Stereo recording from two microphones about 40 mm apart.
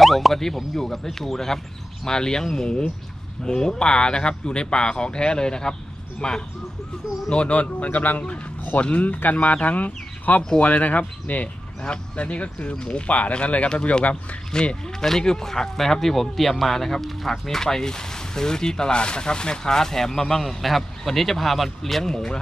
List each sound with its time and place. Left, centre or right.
0.0 s speech: centre; by 14.8 s left
14.9 s speech: centre